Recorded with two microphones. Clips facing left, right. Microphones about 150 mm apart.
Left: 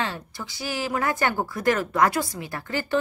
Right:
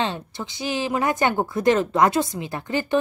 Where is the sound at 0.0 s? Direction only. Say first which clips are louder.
Right 4 dB; 20° right (ahead or behind).